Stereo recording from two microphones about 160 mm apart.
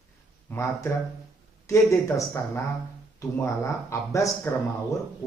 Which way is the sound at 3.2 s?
20° left (ahead or behind).